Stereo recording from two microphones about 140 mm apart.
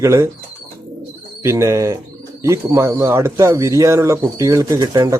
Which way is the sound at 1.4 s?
20° right (ahead or behind).